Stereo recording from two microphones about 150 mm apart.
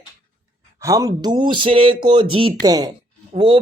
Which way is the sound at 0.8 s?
20° right (ahead or behind).